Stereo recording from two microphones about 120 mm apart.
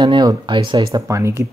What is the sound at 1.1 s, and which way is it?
Speech, 25° right (ahead or behind).